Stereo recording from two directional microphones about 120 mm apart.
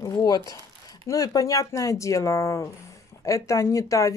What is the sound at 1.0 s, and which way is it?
Speech, 30° left (ahead or behind).